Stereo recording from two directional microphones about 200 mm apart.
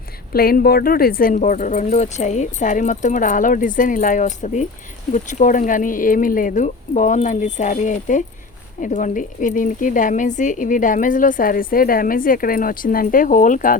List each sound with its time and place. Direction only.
0.3 s speech: 50° left (ahead or behind)